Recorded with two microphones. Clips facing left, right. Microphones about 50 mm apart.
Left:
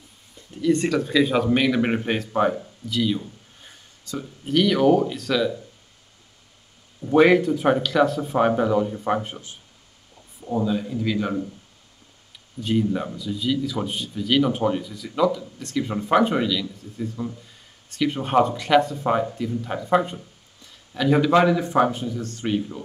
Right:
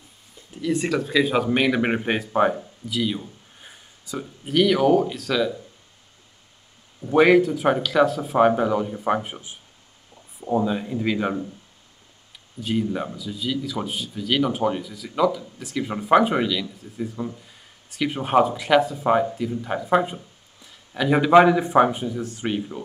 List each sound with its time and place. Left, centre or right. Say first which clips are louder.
0.5 s speech: left 3 dB; centre
7.0 s speech: even; centre
10.4 s a man's voice: right 1 dB; right
12.5 s speech: left 2 dB; centre